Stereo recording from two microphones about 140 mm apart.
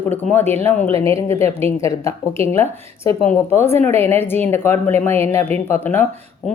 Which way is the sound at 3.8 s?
50° right (ahead or behind).